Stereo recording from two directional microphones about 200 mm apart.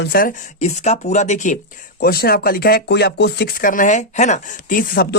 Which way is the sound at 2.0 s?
50° left (ahead or behind).